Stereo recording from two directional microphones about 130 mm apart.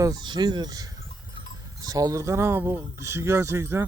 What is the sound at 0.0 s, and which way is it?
Speech, 30° right (ahead or behind).